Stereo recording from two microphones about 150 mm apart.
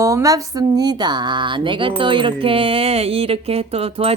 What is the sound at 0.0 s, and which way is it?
Speech, 20° right (ahead or behind).